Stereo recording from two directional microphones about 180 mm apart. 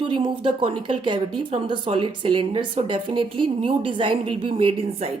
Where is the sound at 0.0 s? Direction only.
25° right (ahead or behind).